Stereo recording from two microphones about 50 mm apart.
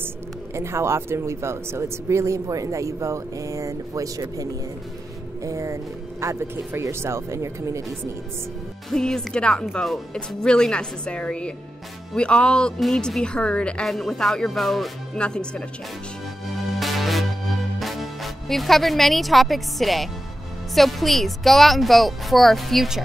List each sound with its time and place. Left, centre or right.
0.6 s speech: right
5.4 s music: right
6.2 s speech: right
8.9 s a woman's voice: centre
13.8 s speech: centre
15.1 s a woman's voice: centre
16.8 s music: centre
17.7 s speech: centre